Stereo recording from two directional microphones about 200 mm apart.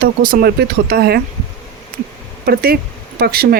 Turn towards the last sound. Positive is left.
turn(degrees=-50)  # may be behind; listen again after turning